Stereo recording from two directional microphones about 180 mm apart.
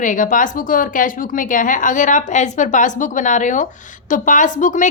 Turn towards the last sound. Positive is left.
turn(degrees=45)  # may be behind; listen again after turning